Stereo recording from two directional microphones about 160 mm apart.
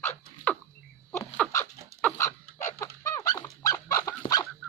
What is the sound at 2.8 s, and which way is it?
Dog, 20° left (ahead or behind).